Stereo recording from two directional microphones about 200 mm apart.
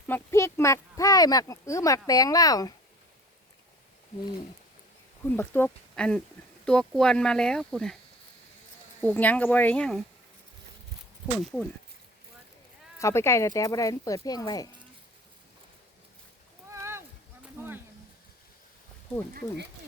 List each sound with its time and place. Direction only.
0.1 s speech: 15° left (ahead or behind)
5.2 s speech: 10° left (ahead or behind)
9.0 s speech: 10° left (ahead or behind)
11.3 s speech: centre (ahead or behind)
13.0 s speech: 15° left (ahead or behind)
16.7 s a sound: 15° right (ahead or behind)